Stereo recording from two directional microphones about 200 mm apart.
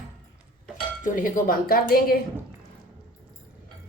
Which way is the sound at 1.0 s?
40° left (ahead or behind).